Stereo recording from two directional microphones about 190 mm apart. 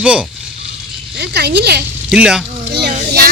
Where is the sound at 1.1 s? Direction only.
60° right (ahead or behind).